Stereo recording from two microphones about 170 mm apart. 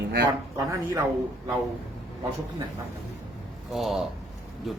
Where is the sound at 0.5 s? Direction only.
15° right (ahead or behind).